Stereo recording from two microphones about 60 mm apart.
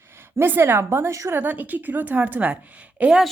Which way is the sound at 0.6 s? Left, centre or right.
Right.